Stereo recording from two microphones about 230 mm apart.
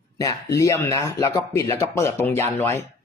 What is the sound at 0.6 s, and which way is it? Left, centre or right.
A man's voice, centre.